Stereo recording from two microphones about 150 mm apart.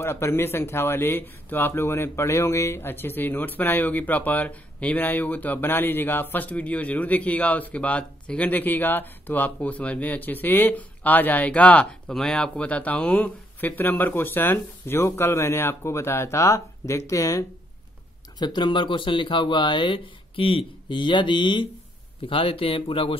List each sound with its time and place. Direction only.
0.0 s speech: 15° left (ahead or behind); by 23.1 s 40° left (ahead or behind)